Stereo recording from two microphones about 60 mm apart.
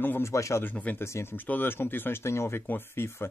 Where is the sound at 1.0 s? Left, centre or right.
Left.